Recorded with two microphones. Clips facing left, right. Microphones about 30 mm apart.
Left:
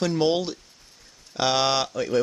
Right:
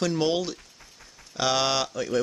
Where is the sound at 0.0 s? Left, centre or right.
Centre.